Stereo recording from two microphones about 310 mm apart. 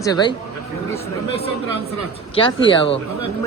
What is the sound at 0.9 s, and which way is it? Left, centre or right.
Chatter, centre.